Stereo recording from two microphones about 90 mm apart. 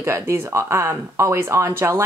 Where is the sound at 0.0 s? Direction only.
25° right (ahead or behind).